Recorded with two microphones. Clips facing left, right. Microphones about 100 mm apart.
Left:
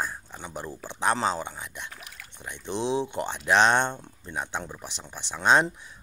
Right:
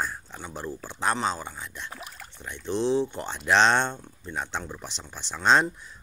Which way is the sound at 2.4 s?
20° left (ahead or behind).